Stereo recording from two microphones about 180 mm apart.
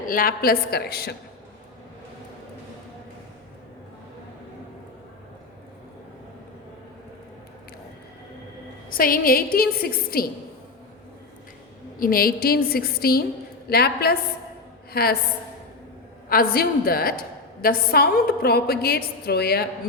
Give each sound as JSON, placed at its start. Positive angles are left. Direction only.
{"t": 0.1, "sound": "a woman's voice", "side_deg": 55}
{"t": 8.9, "sound": "a woman's voice", "side_deg": 50}
{"t": 11.9, "sound": "a woman's voice", "side_deg": 55}
{"t": 16.3, "sound": "a woman's voice", "side_deg": 55}